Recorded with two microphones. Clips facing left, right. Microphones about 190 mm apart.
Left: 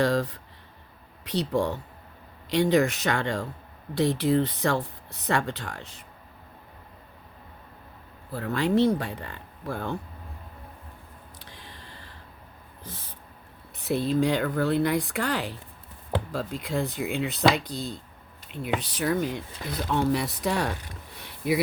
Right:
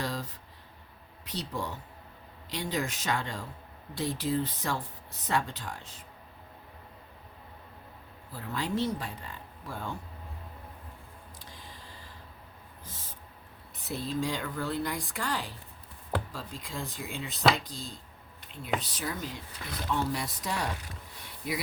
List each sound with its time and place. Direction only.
0.0 s speech: 70° left (ahead or behind)
8.3 s speech: 70° left (ahead or behind)
11.3 s a sound: 65° left (ahead or behind)
12.8 s owl: 65° left (ahead or behind)
13.7 s speech: 65° left (ahead or behind)
21.2 s a sound: 65° left (ahead or behind)